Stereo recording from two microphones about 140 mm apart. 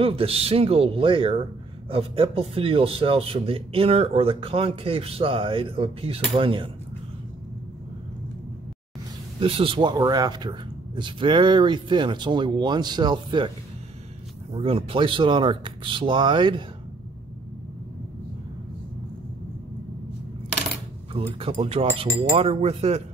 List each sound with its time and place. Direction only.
0.0 s speech: 40° right (ahead or behind)
9.4 s speech: 40° right (ahead or behind)
14.5 s speech: 40° right (ahead or behind)
21.1 s speech: 40° right (ahead or behind)